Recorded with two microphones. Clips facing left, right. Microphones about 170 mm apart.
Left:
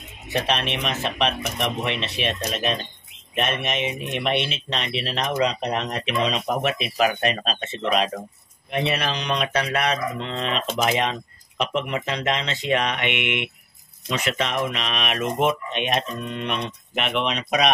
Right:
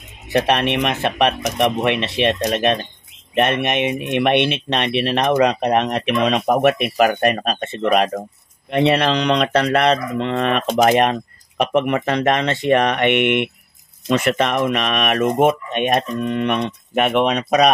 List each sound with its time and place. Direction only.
0.3 s speech: 60° right (ahead or behind)